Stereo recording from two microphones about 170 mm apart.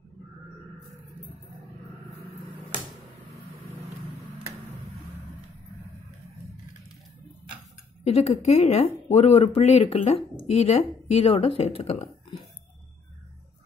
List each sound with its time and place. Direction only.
8.0 s speech: 40° left (ahead or behind)